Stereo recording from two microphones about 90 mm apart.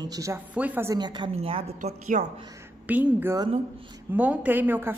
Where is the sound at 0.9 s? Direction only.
55° right (ahead or behind).